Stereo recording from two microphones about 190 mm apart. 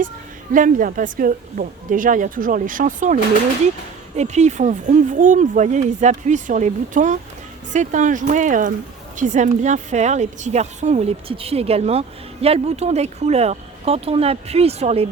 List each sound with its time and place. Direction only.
0.5 s a woman's voice: 45° right (ahead or behind)
4.2 s a woman's voice: 35° right (ahead or behind)